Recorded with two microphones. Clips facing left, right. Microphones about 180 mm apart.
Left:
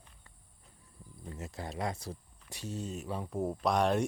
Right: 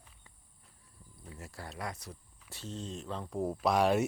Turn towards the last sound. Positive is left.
turn(degrees=-5)  # may be behind; listen again after turning